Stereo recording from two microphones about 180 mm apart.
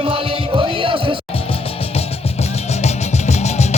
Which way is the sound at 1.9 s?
35° left (ahead or behind).